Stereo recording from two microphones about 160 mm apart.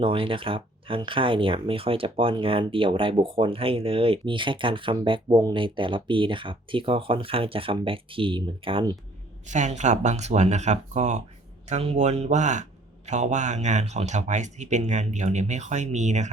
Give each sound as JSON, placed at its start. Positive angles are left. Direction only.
{"t": 0.0, "sound": "speech", "side_deg": -35}
{"t": 9.5, "sound": "speech", "side_deg": -50}